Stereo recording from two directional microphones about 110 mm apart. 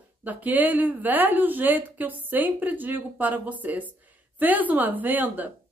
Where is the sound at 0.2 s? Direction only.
15° right (ahead or behind).